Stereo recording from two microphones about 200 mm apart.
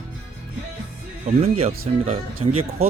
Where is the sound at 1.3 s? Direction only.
30° right (ahead or behind).